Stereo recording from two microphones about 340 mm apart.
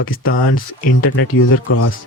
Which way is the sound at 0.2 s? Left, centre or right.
Left.